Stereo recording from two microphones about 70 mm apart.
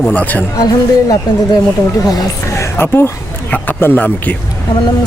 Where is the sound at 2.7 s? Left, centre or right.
Left.